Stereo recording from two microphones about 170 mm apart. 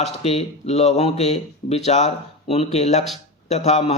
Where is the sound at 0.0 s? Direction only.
35° left (ahead or behind).